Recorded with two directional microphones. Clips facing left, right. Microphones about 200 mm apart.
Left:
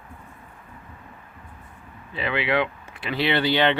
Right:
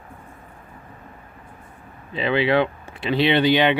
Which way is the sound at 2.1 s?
25° right (ahead or behind).